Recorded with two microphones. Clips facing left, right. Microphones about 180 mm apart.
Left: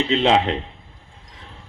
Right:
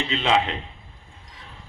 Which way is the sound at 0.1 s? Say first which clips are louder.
Left 4 dB; 35° left (ahead or behind).